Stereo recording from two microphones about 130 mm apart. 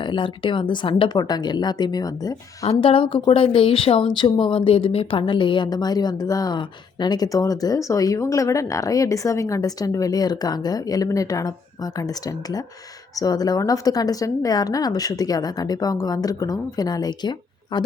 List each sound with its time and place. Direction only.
0.0 s a woman's voice: 40° left (ahead or behind)
2.6 s a woman's voice: 45° left (ahead or behind)